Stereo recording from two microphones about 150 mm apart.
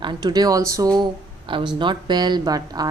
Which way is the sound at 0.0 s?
30° right (ahead or behind).